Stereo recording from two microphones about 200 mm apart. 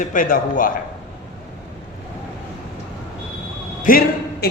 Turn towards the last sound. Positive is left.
turn(degrees=50)  # may be behind; listen again after turning